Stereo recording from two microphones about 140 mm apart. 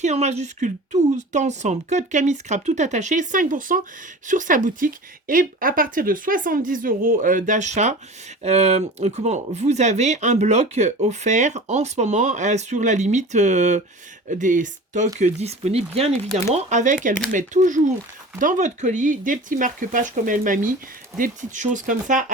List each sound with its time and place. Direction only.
0.0 s speech: 50° right (ahead or behind)
16.5 s speech: 60° right (ahead or behind)